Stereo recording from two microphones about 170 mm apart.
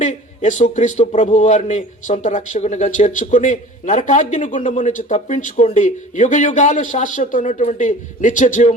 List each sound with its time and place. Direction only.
0.0 s a man's voice: 45° left (ahead or behind)